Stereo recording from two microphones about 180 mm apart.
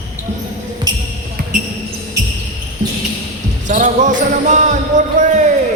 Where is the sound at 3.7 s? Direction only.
45° right (ahead or behind).